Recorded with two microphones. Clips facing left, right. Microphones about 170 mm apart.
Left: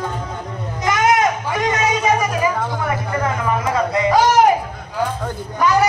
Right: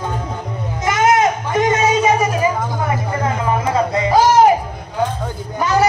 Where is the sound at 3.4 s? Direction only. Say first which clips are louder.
Right 4 dB; 25° right (ahead or behind).